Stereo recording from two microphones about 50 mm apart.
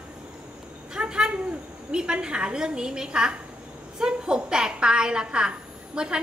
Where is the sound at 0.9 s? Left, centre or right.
Centre.